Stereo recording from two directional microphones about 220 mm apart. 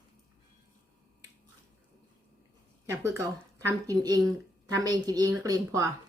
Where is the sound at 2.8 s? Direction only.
10° right (ahead or behind).